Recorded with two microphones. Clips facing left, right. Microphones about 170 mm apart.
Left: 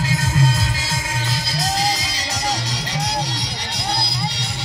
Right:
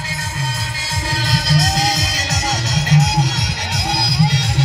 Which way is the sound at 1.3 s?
40° right (ahead or behind).